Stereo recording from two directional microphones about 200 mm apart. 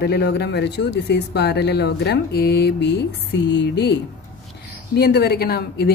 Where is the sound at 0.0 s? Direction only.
55° left (ahead or behind).